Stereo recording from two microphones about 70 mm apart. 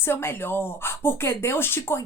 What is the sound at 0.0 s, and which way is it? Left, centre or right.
A woman's voice, left.